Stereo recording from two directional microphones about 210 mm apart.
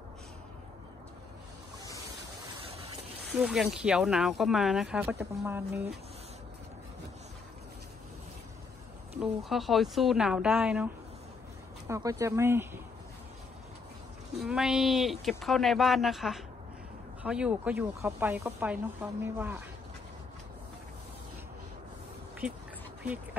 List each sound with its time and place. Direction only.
3.3 s speech: 5° right (ahead or behind)
9.2 s speech: centre (ahead or behind)
11.9 s speech: 15° right (ahead or behind)
14.4 s speech: centre (ahead or behind)